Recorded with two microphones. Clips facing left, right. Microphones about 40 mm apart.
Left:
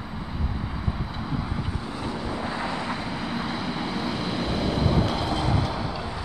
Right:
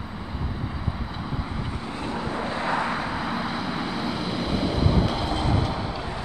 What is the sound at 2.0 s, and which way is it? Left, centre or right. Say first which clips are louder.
Vehicle: right 2 dB; centre.